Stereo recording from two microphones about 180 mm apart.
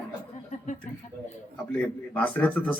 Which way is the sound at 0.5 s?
40° left (ahead or behind).